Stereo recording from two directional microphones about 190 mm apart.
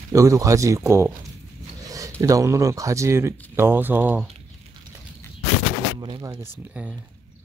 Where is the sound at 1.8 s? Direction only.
15° right (ahead or behind).